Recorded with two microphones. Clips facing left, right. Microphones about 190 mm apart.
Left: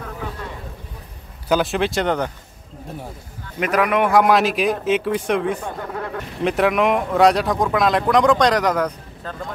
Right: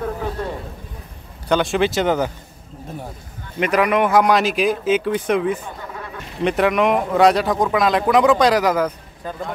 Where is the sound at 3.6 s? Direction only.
Centre (ahead or behind).